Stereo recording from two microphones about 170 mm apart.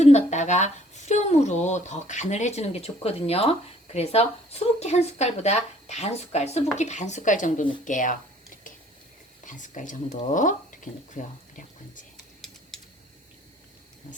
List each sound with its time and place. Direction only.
0.0 s speech: 40° left (ahead or behind)
9.4 s speech: 50° left (ahead or behind)